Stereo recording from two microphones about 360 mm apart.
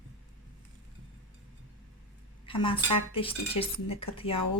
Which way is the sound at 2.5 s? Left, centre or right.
Centre.